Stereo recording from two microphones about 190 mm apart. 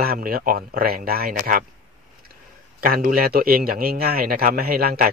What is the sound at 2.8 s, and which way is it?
A man's voice, 50° right (ahead or behind).